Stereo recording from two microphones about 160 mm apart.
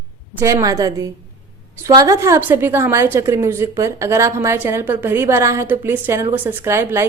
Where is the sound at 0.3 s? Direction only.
20° right (ahead or behind).